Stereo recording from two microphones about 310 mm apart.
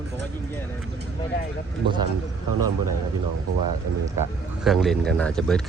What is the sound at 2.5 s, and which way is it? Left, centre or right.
Speech, right.